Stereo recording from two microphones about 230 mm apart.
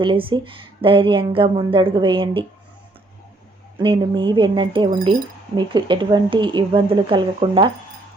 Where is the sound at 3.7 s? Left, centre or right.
Right.